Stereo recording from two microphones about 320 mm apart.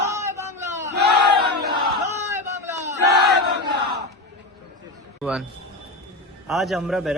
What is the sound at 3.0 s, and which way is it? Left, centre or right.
Battle cry, right.